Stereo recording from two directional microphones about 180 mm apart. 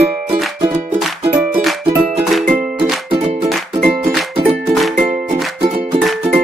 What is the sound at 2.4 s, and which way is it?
Music, 45° right (ahead or behind).